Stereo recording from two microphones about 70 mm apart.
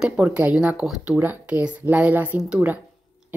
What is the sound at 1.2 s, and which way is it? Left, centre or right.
A woman's voice, right.